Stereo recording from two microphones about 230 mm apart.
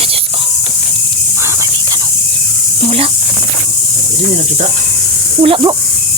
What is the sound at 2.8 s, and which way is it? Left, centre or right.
Speech, right.